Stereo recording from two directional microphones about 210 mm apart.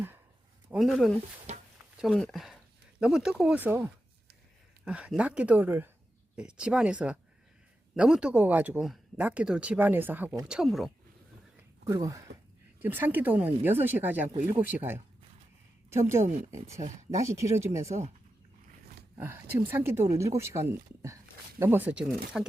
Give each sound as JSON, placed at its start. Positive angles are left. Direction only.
{"t": 0.7, "sound": "speech", "side_deg": 0}
{"t": 1.5, "sound": "a sound", "side_deg": -30}
{"t": 2.0, "sound": "speech", "side_deg": 0}
{"t": 11.9, "sound": "speech", "side_deg": -15}
{"t": 15.9, "sound": "speech", "side_deg": -15}
{"t": 17.8, "sound": "speech", "side_deg": -30}
{"t": 19.1, "sound": "speech", "side_deg": -10}